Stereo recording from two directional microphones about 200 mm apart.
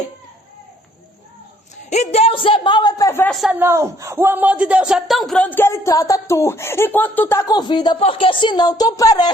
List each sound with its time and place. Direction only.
1.7 s a man's voice: 35° left (ahead or behind); by 3.3 s 10° left (ahead or behind)
3.4 s a man's voice: 10° right (ahead or behind); by 9.3 s 20° left (ahead or behind)